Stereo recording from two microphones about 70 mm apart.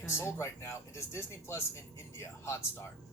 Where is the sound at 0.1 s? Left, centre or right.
Left.